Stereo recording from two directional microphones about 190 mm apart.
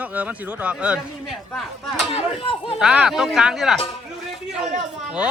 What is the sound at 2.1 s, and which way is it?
Speech, 30° left (ahead or behind).